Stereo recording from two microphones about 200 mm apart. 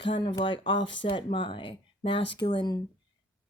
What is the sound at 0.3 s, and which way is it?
Speech, 25° left (ahead or behind).